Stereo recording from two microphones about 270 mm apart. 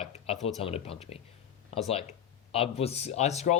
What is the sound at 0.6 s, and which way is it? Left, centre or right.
Speech, left.